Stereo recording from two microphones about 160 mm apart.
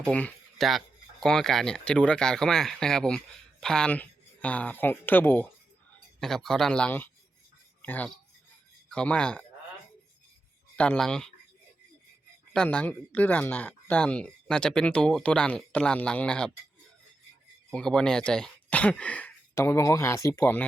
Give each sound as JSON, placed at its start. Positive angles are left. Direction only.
{"t": 0.0, "sound": "speech", "side_deg": 10}
{"t": 10.8, "sound": "speech", "side_deg": 5}
{"t": 12.5, "sound": "speech", "side_deg": 10}
{"t": 17.7, "sound": "speech", "side_deg": 5}